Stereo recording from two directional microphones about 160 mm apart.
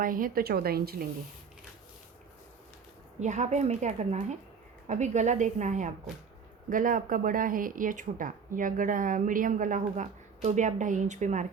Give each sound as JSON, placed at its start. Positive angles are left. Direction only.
{"t": 0.0, "sound": "a woman's voice", "side_deg": -60}
{"t": 3.2, "sound": "a woman's voice", "side_deg": -45}